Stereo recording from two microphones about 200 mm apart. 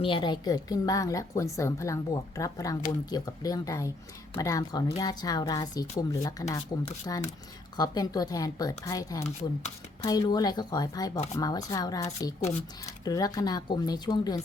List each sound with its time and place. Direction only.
0.0 s a woman's voice: 25° left (ahead or behind)
9.2 s speech: 35° left (ahead or behind)
10.0 s a woman's voice: 20° left (ahead or behind)